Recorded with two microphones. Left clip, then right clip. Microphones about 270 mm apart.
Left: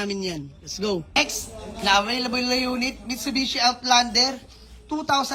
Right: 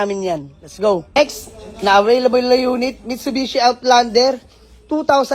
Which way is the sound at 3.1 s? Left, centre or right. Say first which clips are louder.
Right 5 dB; centre.